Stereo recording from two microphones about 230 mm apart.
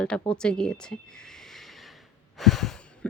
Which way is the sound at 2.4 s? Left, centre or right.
Centre.